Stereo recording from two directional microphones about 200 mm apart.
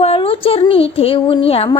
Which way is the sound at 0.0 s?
30° left (ahead or behind).